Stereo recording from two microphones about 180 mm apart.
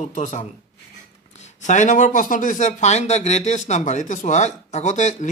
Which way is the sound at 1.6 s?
45° left (ahead or behind).